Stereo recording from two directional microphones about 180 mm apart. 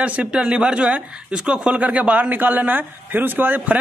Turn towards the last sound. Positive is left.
turn(degrees=-10)  # may be behind; listen again after turning